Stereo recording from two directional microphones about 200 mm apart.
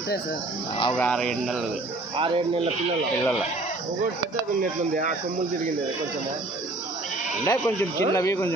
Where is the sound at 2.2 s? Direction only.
25° right (ahead or behind).